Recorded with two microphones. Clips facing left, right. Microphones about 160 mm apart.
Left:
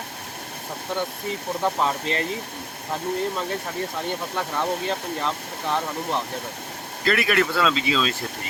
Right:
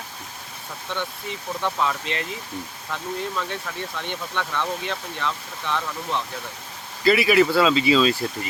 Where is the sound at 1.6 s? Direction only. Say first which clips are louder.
Left 1 dB; 35° left (ahead or behind).